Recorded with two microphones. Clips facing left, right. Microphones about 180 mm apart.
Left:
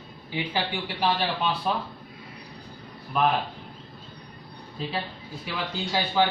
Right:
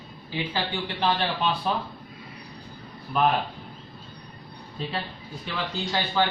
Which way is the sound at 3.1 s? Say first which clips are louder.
Right 1 dB; centre (ahead or behind).